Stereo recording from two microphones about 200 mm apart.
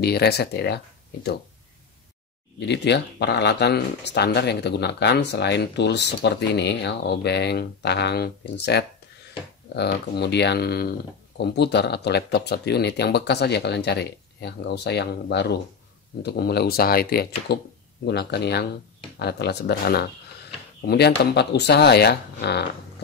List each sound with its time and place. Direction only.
0.0 s speech: 55° left (ahead or behind)
2.6 s speech: 60° left (ahead or behind)